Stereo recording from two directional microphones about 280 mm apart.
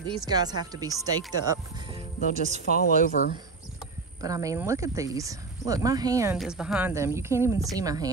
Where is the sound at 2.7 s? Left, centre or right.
Left.